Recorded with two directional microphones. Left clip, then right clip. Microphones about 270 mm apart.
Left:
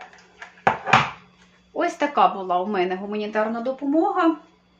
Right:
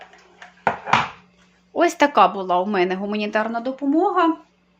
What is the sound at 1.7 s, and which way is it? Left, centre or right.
Speech, right.